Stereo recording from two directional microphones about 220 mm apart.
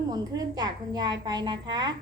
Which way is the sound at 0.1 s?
20° right (ahead or behind).